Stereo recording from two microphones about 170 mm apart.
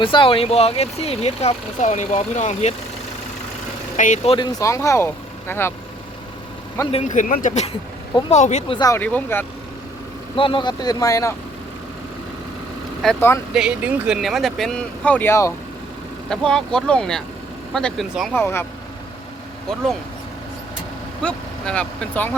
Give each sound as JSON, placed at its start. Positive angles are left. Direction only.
{"t": 0.0, "sound": "speech", "side_deg": 30}
{"t": 3.9, "sound": "speech", "side_deg": 45}
{"t": 4.4, "sound": "speech", "side_deg": 15}
{"t": 6.9, "sound": "speech", "side_deg": 45}
{"t": 8.9, "sound": "speech", "side_deg": 10}
{"t": 10.3, "sound": "speech", "side_deg": 30}
{"t": 13.0, "sound": "speech", "side_deg": 0}
{"t": 16.3, "sound": "speech", "side_deg": 5}
{"t": 18.3, "sound": "speech", "side_deg": 15}
{"t": 21.2, "sound": "speech", "side_deg": 5}